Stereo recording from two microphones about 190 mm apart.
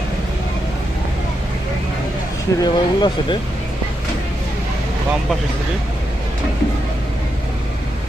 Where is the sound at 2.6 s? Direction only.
20° left (ahead or behind).